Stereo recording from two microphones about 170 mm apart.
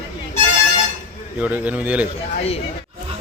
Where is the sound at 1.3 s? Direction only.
10° right (ahead or behind).